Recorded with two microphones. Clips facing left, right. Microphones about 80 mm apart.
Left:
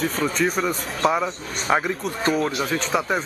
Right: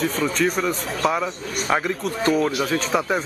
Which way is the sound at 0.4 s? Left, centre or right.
Centre.